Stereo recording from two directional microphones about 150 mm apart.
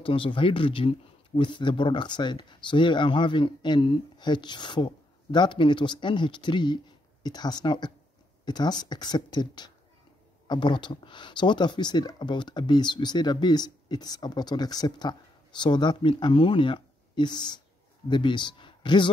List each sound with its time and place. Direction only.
0.0 s speech: 35° left (ahead or behind)